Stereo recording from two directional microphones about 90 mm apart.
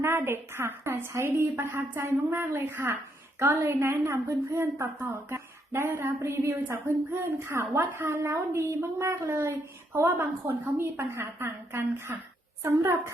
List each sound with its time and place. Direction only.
0.0 s a woman's voice: 25° right (ahead or behind)
12.6 s a woman's voice: 35° right (ahead or behind)